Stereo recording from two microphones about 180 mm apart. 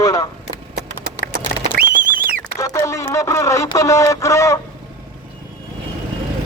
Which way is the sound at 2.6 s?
20° left (ahead or behind).